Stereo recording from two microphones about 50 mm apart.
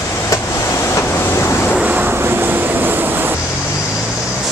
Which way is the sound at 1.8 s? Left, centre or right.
Right.